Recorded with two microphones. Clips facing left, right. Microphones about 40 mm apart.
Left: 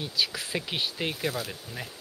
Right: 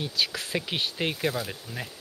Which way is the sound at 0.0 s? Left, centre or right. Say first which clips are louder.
Right 1 dB; centre.